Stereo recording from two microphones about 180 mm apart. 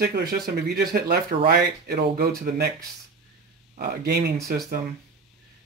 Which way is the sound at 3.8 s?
65° right (ahead or behind).